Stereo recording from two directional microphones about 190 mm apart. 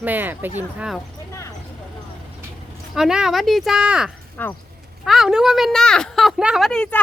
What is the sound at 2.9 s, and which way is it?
A woman's voice, 5° right (ahead or behind).